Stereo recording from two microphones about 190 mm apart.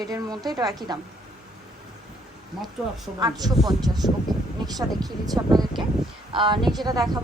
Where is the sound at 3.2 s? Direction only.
20° right (ahead or behind).